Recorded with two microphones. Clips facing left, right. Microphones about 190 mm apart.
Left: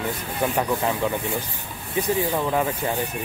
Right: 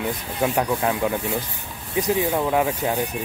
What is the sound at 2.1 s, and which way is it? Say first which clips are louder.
Speech: right 3 dB; 10° right (ahead or behind).